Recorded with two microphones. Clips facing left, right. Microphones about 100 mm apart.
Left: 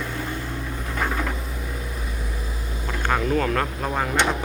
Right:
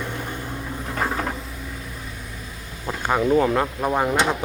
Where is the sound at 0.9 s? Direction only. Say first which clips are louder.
Right 1 dB; 30° right (ahead or behind).